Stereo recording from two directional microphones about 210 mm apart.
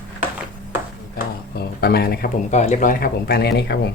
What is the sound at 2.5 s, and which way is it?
Speech, 35° left (ahead or behind).